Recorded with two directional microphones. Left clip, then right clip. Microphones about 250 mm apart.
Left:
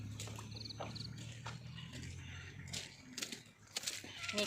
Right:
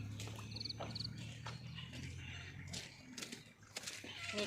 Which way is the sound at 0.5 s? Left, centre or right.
Centre.